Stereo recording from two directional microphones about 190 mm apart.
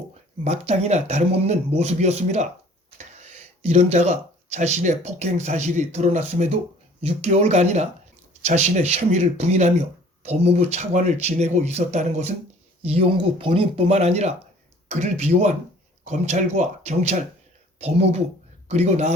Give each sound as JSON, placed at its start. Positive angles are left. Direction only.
{"t": 0.4, "sound": "speech", "side_deg": -35}
{"t": 3.7, "sound": "speech", "side_deg": -35}